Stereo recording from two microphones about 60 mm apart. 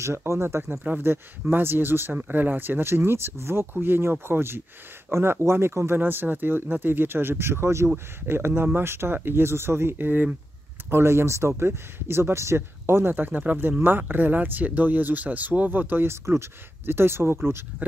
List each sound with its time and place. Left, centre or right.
0.0 s speech: right
0.8 s speech: right
10.9 s speech: right
16.1 s speech: right